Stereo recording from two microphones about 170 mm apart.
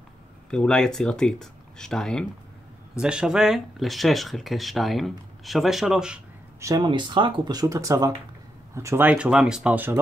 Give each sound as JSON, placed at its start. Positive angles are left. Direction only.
{"t": 0.5, "sound": "speech", "side_deg": 5}
{"t": 6.6, "sound": "speech", "side_deg": -25}